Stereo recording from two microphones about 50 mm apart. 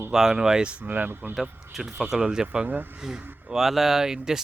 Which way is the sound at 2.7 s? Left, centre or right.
Right.